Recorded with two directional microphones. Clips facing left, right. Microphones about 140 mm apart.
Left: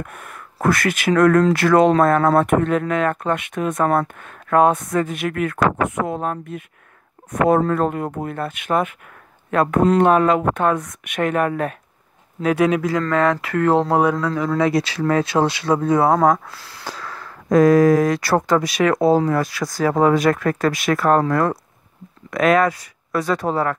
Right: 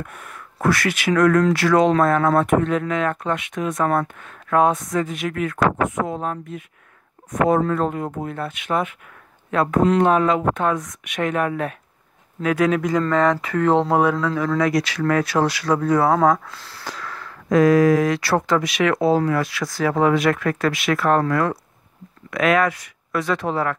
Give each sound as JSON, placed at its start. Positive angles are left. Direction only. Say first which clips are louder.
{"t": 0.0, "sound": "speech", "louder": "left 1 dB", "side_deg": 50}
{"t": 2.0, "sound": "speech", "louder": "left 2 dB", "side_deg": 40}
{"t": 2.4, "sound": "speech", "louder": "left 1 dB", "side_deg": 55}
{"t": 12.4, "sound": "speech", "louder": "left 2 dB", "side_deg": 30}
{"t": 12.7, "sound": "speech", "louder": "even", "side_deg": 5}
{"t": 14.6, "sound": "speech", "louder": "left 3 dB", "side_deg": 25}
{"t": 16.2, "sound": "speech", "louder": "left 1 dB", "side_deg": 10}
{"t": 16.8, "sound": "speech", "louder": "left 1 dB", "side_deg": 30}